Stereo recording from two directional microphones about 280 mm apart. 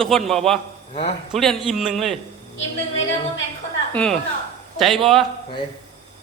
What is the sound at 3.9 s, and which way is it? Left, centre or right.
A man's voice, centre.